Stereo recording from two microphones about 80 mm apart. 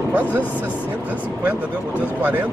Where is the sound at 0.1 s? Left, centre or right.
Right.